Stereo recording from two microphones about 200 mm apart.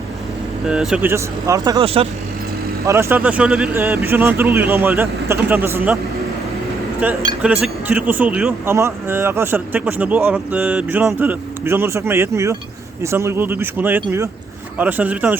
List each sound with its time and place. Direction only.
0.7 s speech: 5° right (ahead or behind)
1.8 s speech: 30° right (ahead or behind)
2.8 s speech: 15° right (ahead or behind)
7.0 s speech: 10° right (ahead or behind)